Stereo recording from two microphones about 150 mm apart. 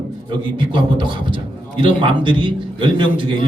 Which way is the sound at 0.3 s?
35° right (ahead or behind).